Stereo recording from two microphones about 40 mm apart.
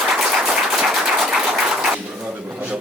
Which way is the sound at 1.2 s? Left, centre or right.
Centre.